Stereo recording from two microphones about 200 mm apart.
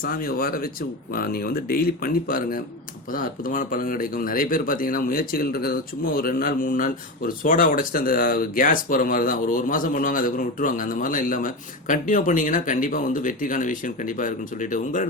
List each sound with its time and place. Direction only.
0.0 s speech: 45° left (ahead or behind)